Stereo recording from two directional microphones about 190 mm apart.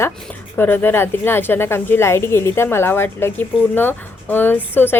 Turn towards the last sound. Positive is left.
turn(degrees=10)  # may be behind; listen again after turning